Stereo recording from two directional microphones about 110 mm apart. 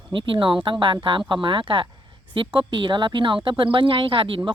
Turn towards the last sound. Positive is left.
turn(degrees=-50)  # may be behind; listen again after turning